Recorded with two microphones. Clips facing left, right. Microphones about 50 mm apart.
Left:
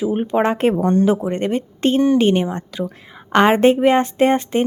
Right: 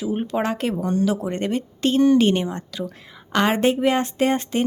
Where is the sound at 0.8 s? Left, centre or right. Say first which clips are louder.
Left 6 dB; left.